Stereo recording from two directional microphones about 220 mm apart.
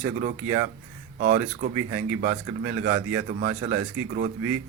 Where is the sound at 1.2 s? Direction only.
40° right (ahead or behind).